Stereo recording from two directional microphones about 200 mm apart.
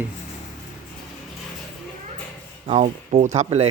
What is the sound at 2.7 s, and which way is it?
Speech, 30° right (ahead or behind).